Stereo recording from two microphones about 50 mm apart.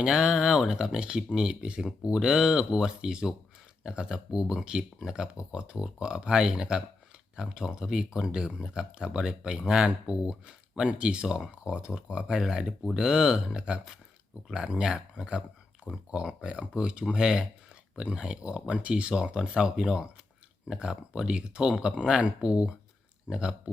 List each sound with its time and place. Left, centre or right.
0.0 s speech: centre